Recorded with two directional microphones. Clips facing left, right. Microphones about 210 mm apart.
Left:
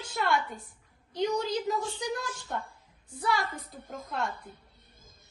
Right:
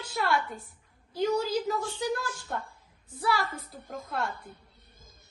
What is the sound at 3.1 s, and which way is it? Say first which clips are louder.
A woman's voice: right 1 dB; 5° right (ahead or behind).